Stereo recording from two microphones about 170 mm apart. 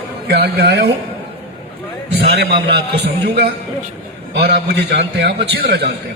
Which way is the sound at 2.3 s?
70° right (ahead or behind).